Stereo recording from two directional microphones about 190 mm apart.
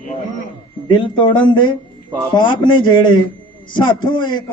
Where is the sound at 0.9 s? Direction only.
25° left (ahead or behind).